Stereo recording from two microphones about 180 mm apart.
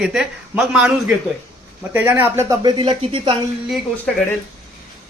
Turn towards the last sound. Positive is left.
turn(degrees=0)  # may be behind; listen again after turning